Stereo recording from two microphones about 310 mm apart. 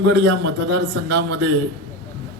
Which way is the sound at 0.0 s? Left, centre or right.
Right.